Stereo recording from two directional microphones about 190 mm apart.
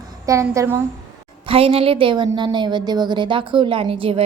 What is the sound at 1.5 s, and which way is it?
A woman's voice, 30° right (ahead or behind).